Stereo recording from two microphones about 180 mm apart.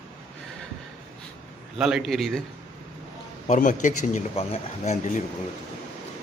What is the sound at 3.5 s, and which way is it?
Speech, 45° left (ahead or behind).